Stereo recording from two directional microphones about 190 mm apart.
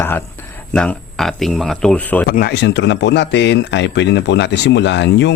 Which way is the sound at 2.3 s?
60° left (ahead or behind).